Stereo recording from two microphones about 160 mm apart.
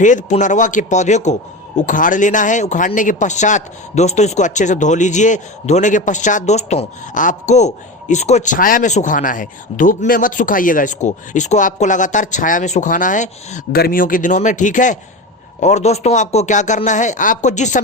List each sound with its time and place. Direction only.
0.0 s speech: 50° left (ahead or behind)
13.7 s speech: 65° left (ahead or behind); by 17.8 s 50° left (ahead or behind)